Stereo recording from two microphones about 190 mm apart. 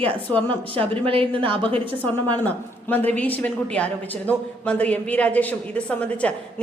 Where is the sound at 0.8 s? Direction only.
30° right (ahead or behind).